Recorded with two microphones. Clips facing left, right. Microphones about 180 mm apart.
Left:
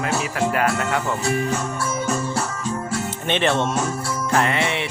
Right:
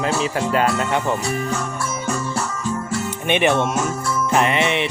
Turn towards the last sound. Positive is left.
turn(degrees=-20)  # may be behind; listen again after turning